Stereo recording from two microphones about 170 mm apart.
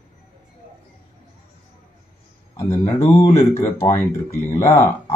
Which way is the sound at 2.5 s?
15° left (ahead or behind).